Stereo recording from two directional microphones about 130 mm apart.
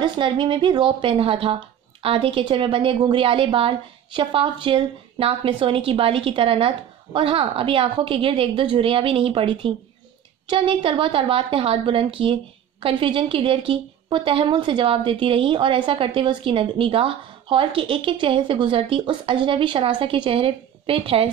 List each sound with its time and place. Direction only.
0.0 s a woman's voice: 40° right (ahead or behind)